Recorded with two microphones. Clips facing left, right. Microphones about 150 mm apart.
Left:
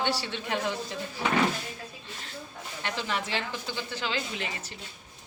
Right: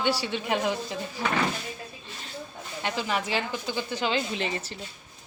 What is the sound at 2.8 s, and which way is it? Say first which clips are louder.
A woman's voice: right 3 dB; 15° right (ahead or behind).